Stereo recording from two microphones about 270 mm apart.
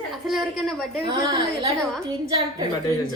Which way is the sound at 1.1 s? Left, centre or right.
Centre.